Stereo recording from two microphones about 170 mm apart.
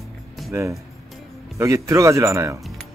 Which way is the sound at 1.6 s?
15° right (ahead or behind).